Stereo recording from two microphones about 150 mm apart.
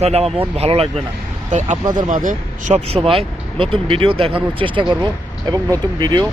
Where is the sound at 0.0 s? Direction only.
45° right (ahead or behind).